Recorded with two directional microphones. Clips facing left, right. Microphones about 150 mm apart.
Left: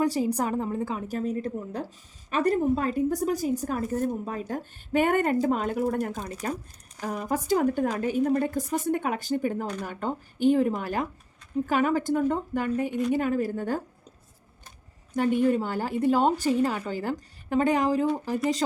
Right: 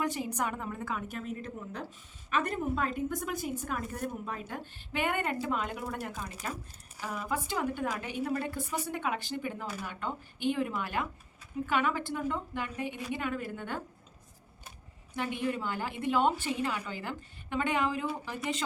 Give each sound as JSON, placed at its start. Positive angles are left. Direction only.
{"t": 0.0, "sound": "a woman's voice", "side_deg": 35}
{"t": 15.1, "sound": "a woman's voice", "side_deg": 45}